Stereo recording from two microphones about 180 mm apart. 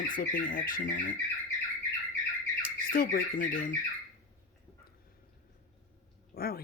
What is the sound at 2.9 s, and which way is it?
Speech, 50° left (ahead or behind).